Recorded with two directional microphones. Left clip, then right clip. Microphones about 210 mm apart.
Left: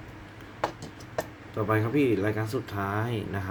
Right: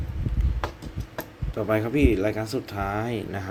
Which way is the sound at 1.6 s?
10° right (ahead or behind).